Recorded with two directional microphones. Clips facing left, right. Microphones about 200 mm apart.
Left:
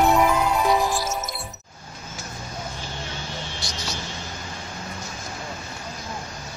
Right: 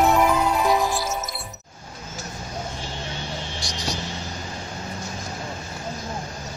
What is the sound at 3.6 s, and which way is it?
Vehicle, 15° right (ahead or behind).